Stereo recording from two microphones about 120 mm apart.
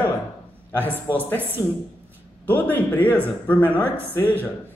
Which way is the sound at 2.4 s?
15° left (ahead or behind).